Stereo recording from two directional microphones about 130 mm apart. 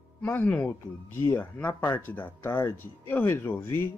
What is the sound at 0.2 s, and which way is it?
Speech, 15° left (ahead or behind).